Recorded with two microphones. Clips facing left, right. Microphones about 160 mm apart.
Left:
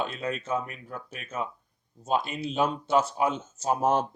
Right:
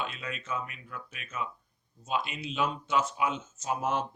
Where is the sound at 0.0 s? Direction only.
40° left (ahead or behind).